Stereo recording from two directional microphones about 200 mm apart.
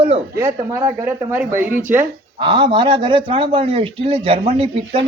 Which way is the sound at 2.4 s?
25° right (ahead or behind).